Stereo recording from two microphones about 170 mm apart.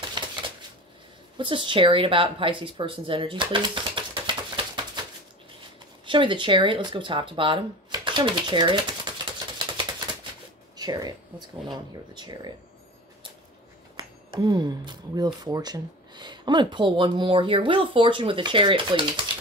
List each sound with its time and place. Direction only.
0.2 s typewriter: 25° right (ahead or behind)
1.4 s speech: 30° right (ahead or behind)
6.0 s speech: 30° right (ahead or behind)
13.9 s speech: 25° right (ahead or behind)